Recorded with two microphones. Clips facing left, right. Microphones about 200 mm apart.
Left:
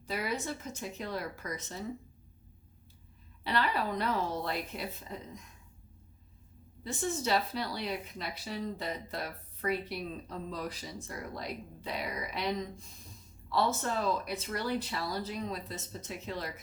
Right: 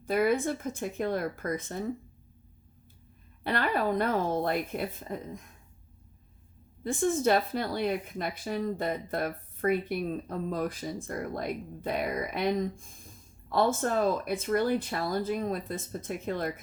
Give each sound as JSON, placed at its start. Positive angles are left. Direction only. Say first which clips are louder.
{"t": 0.0, "sound": "speech", "louder": "right 9 dB", "side_deg": -50}
{"t": 3.4, "sound": "speech", "louder": "right 4 dB", "side_deg": -50}
{"t": 6.8, "sound": "speech", "louder": "right 8 dB", "side_deg": -50}